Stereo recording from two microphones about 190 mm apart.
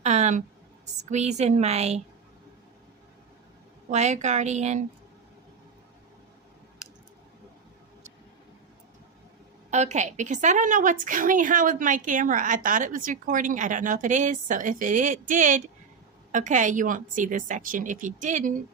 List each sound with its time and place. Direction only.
0.0 s a sound: 35° right (ahead or behind)
1.1 s a woman's voice: 35° right (ahead or behind)
3.8 s a woman's voice: 40° right (ahead or behind)
9.6 s a woman's voice: 40° right (ahead or behind)